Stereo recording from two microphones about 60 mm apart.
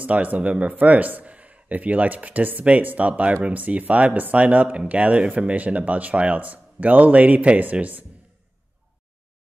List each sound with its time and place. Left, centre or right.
0.0 s speech: right